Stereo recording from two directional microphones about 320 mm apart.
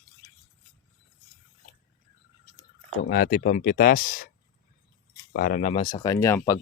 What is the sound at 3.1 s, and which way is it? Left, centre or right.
Speech, left.